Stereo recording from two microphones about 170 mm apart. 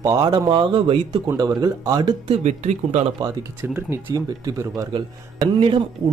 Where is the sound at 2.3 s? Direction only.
40° right (ahead or behind).